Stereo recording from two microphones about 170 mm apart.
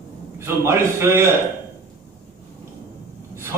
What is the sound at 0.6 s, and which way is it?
Speech, 15° right (ahead or behind).